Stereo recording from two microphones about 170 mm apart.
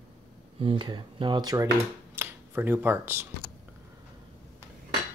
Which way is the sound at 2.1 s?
10° right (ahead or behind).